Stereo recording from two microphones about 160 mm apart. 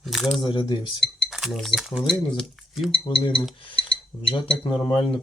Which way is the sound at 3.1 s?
30° left (ahead or behind).